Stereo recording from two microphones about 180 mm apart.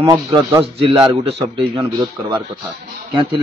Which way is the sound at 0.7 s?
30° right (ahead or behind).